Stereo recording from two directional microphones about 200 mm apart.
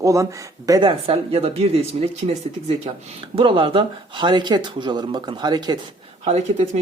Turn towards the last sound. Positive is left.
turn(degrees=-35)  # may be behind; listen again after turning